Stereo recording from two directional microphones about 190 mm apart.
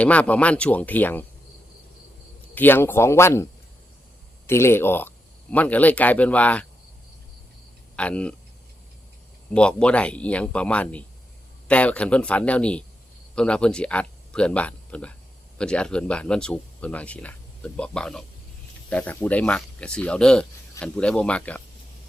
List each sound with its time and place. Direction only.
0.0 s speech: 5° left (ahead or behind)
2.6 s speech: 10° left (ahead or behind)
4.4 s speech: 15° left (ahead or behind)
7.9 s speech: 5° left (ahead or behind)
9.5 s speech: 5° left (ahead or behind)